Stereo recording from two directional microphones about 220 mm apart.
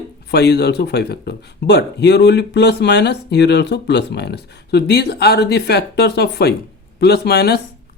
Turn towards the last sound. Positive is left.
turn(degrees=45)  # may be behind; listen again after turning